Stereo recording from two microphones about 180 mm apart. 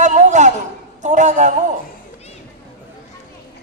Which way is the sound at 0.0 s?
40° right (ahead or behind).